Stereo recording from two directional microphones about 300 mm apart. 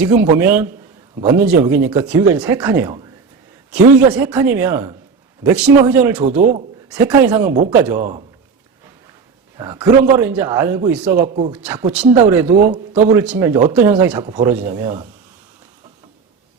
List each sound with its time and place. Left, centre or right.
0.0 s a man's voice: centre
6.3 s a man's voice: right
6.9 s speech: centre
9.6 s a man's voice: centre
11.3 s a man's voice: right
11.5 s speech: centre
12.9 s speech: right
13.1 s a man's voice: centre